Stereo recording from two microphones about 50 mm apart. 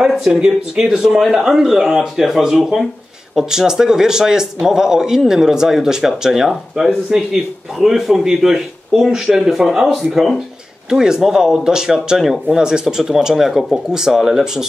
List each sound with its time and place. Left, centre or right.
0.0 s a man's voice: centre